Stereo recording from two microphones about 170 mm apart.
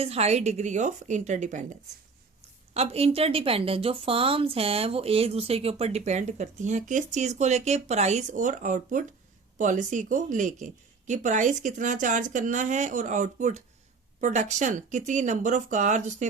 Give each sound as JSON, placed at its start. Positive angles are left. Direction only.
{"t": 0.0, "sound": "speech", "side_deg": -35}
{"t": 2.7, "sound": "a woman's voice", "side_deg": -35}